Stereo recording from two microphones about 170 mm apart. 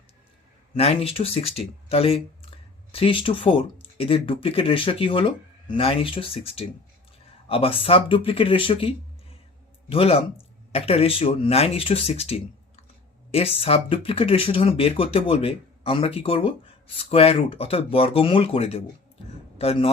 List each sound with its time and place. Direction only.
0.8 s a man's voice: 35° left (ahead or behind)